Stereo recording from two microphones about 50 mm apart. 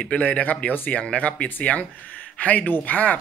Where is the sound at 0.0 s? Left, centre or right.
Left.